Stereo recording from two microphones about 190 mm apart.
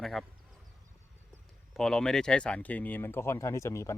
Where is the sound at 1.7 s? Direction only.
5° left (ahead or behind).